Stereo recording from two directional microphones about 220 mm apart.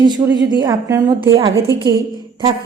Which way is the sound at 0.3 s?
15° right (ahead or behind).